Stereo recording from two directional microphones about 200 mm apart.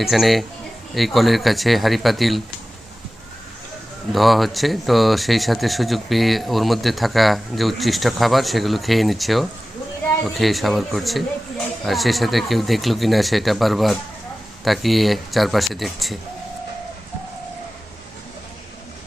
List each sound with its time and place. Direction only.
0.0 s speech: centre (ahead or behind)
4.1 s speech: centre (ahead or behind)